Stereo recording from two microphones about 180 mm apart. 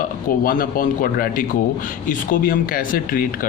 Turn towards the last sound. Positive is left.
turn(degrees=50)  # may be behind; listen again after turning